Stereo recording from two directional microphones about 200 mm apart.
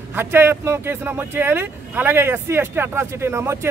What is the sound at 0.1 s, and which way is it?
Speech, 10° right (ahead or behind).